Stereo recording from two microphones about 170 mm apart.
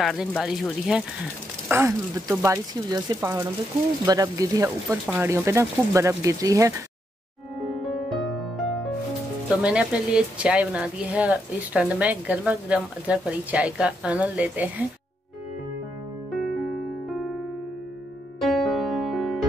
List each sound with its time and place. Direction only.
0.0 s speech: centre (ahead or behind)
1.7 s speech: 15° right (ahead or behind)
7.6 s music: centre (ahead or behind)
9.6 s speech: 5° right (ahead or behind)
16.3 s music: centre (ahead or behind)
18.4 s music: centre (ahead or behind)